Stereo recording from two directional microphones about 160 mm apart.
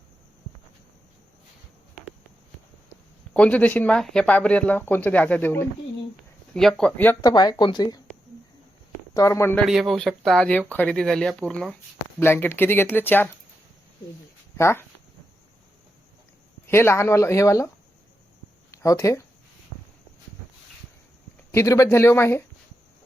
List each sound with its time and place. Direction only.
3.3 s speech: 5° left (ahead or behind)
7.2 s speech: 25° left (ahead or behind)
9.1 s speech: 20° left (ahead or behind)
9.6 s speech: centre (ahead or behind)
14.5 s speech: 15° left (ahead or behind)
16.6 s speech: 15° left (ahead or behind)
18.7 s speech: 20° left (ahead or behind)
21.5 s speech: 20° left (ahead or behind)